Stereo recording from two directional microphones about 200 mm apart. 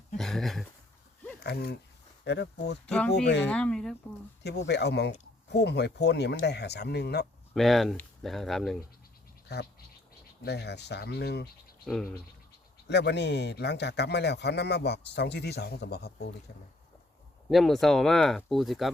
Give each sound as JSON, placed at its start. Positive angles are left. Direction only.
{"t": 0.2, "sound": "speech", "side_deg": 0}
{"t": 1.5, "sound": "speech", "side_deg": 50}
{"t": 3.5, "sound": "speech", "side_deg": 5}
{"t": 4.6, "sound": "speech", "side_deg": 55}
{"t": 7.5, "sound": "speech", "side_deg": 0}
{"t": 9.5, "sound": "speech", "side_deg": 55}
{"t": 12.9, "sound": "speech", "side_deg": 60}
{"t": 17.5, "sound": "speech", "side_deg": 0}